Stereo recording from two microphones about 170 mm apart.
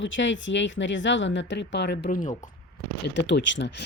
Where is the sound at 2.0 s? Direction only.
50° left (ahead or behind).